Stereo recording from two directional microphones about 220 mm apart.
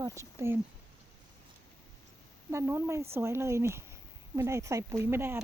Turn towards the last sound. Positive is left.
turn(degrees=-10)  # may be behind; listen again after turning